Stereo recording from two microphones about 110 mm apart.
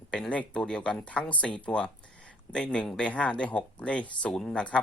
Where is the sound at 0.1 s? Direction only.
10° left (ahead or behind).